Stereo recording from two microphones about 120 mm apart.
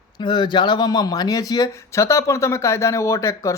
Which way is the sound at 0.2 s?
40° left (ahead or behind).